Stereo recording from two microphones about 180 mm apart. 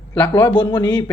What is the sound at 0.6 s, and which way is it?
Speech, 25° left (ahead or behind).